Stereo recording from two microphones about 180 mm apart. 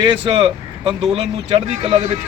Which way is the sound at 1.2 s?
35° right (ahead or behind).